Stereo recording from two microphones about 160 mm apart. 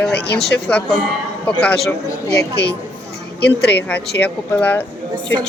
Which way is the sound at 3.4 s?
90° left.